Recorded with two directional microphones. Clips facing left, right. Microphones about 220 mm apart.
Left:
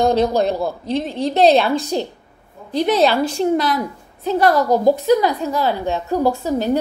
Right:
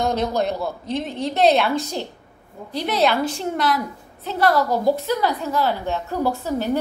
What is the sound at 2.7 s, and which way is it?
Speech, 15° left (ahead or behind).